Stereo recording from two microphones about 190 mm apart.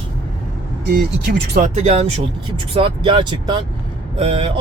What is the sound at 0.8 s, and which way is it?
Speech, 60° right (ahead or behind).